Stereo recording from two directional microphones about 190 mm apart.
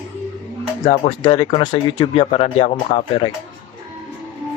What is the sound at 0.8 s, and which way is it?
Speech, 20° left (ahead or behind).